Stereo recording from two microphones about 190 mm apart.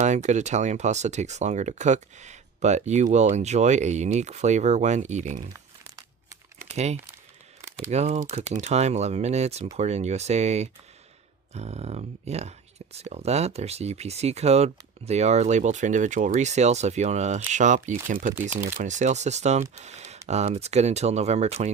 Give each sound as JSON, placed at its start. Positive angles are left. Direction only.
{"t": 0.0, "sound": "speech", "side_deg": -40}
{"t": 5.5, "sound": "crumpling", "side_deg": -15}
{"t": 6.7, "sound": "speech", "side_deg": -35}